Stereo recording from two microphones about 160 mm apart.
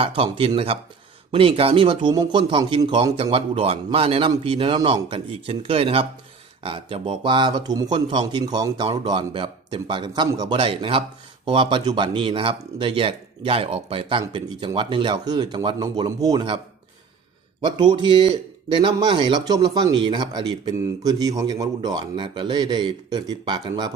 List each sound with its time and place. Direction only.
0.0 s speech: 35° right (ahead or behind)
17.6 s speech: 30° right (ahead or behind)